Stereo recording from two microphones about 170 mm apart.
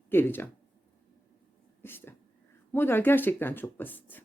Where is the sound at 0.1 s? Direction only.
10° left (ahead or behind).